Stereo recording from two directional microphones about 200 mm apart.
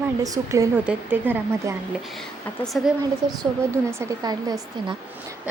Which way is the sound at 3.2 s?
20° right (ahead or behind).